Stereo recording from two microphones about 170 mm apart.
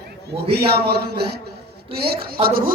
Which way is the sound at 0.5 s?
70° right (ahead or behind).